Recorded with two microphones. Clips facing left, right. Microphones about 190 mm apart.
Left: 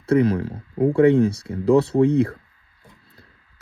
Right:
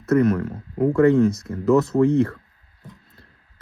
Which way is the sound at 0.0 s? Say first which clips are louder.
Even; 30° left (ahead or behind).